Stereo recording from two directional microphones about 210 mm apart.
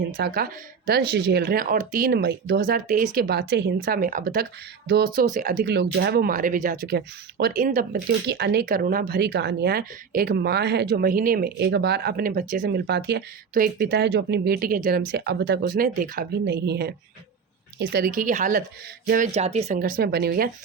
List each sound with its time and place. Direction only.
0.2 s speech: 45° right (ahead or behind)
8.3 s speech: 50° right (ahead or behind)